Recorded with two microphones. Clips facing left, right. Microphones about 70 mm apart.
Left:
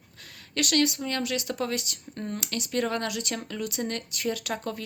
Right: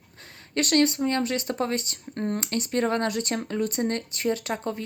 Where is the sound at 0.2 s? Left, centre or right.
Right.